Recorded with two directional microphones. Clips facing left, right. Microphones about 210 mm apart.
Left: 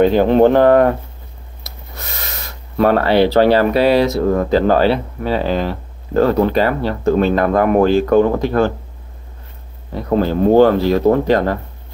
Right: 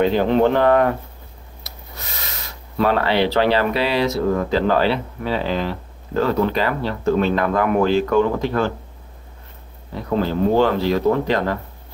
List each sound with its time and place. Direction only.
0.0 s speech: 45° left (ahead or behind)
2.0 s speech: 50° left (ahead or behind)
10.0 s speech: 45° left (ahead or behind)